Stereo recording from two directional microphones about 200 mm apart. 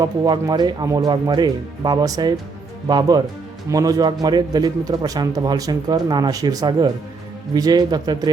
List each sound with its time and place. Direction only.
0.0 s a man's voice: 20° right (ahead or behind)